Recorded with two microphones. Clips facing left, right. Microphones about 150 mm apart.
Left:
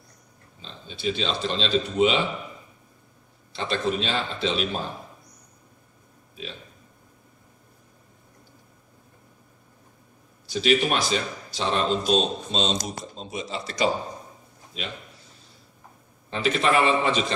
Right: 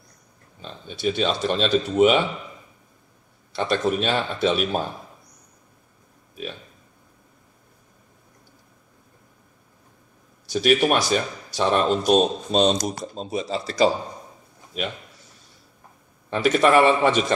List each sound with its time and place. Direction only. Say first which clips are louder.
0.6 s speech: right 5 dB; 55° right (ahead or behind)
3.5 s speech: right 4 dB; 50° right (ahead or behind)
10.5 s speech: right 3 dB; 50° right (ahead or behind)
12.8 s speech: right 6 dB; 45° right (ahead or behind)
16.3 s speech: right 5 dB; 55° right (ahead or behind)